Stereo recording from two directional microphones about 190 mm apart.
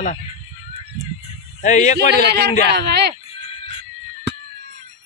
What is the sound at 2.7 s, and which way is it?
Speech, 60° right (ahead or behind).